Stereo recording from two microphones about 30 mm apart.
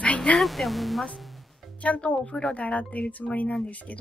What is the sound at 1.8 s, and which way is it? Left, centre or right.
Speech, left.